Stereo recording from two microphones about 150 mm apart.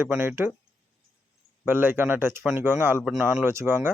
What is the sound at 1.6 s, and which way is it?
Speech, 15° right (ahead or behind).